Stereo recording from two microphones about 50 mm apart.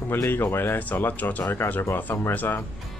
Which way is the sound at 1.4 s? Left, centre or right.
Left.